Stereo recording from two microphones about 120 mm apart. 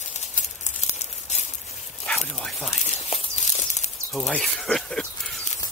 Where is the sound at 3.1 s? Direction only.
55° left (ahead or behind).